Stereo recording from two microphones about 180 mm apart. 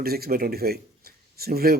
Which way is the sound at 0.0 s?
55° right (ahead or behind).